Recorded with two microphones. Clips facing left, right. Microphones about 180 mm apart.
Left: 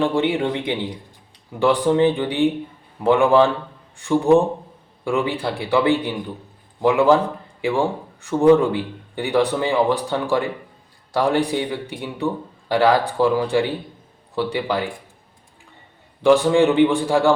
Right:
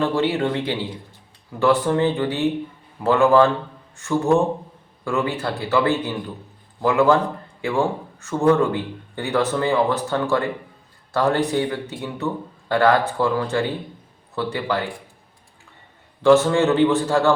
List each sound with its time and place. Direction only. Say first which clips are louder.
0.0 s speech: left 1 dB; 15° left (ahead or behind)
16.2 s speech: left 1 dB; 15° left (ahead or behind)